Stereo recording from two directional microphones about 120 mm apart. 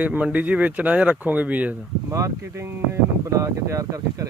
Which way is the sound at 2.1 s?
25° right (ahead or behind).